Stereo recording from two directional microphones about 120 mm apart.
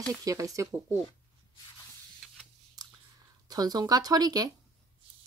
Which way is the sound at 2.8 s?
35° right (ahead or behind).